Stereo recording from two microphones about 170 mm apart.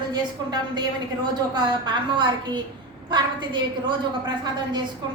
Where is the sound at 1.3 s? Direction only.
25° right (ahead or behind).